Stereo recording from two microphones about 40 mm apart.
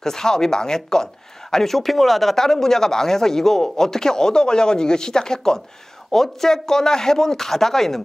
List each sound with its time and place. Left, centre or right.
0.0 s speech: centre